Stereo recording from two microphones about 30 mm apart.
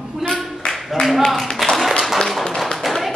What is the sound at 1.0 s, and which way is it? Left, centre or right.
Speech, left.